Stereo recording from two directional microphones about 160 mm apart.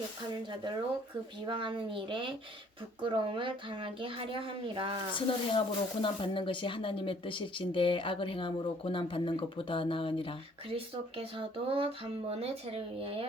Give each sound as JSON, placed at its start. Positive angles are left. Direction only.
{"t": 1.5, "sound": "a woman's voice", "side_deg": -30}
{"t": 5.1, "sound": "speech", "side_deg": 30}
{"t": 10.7, "sound": "a woman's voice", "side_deg": -35}